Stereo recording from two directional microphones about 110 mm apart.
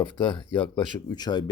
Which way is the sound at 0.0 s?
45° left (ahead or behind).